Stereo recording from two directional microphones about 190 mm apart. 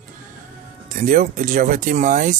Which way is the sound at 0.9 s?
45° right (ahead or behind).